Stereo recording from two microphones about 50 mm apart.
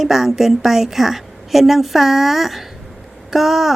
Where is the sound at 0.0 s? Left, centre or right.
Centre.